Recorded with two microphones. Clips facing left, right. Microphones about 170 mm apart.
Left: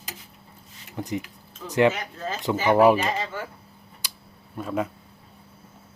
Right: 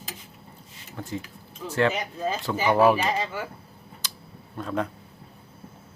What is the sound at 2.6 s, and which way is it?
Speech, 15° left (ahead or behind).